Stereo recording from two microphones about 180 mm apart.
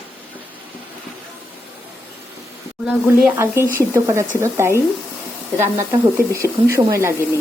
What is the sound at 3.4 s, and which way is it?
Speech, 15° right (ahead or behind).